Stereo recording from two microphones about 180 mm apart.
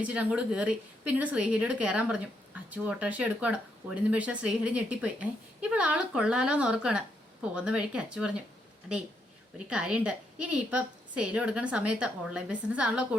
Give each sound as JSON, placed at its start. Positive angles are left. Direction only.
{"t": 0.0, "sound": "a woman's voice", "side_deg": -5}
{"t": 9.6, "sound": "a woman's voice", "side_deg": -5}